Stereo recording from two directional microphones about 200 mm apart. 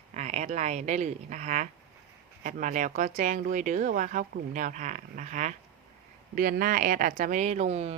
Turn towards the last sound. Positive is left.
turn(degrees=-35)  # may be behind; listen again after turning